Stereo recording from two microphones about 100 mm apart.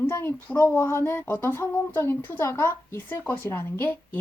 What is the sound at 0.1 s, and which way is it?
Speech, 25° left (ahead or behind).